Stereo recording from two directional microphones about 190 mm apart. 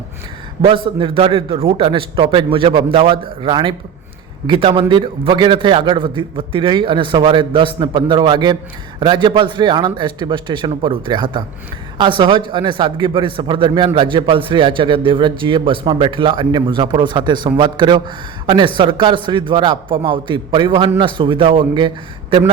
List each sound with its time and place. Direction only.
0.6 s a man's voice: 30° right (ahead or behind)